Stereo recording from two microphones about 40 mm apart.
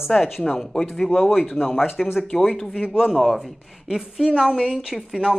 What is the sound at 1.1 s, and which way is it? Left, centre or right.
Speech, centre.